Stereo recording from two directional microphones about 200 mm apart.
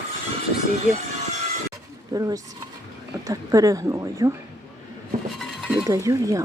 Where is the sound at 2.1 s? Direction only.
15° right (ahead or behind).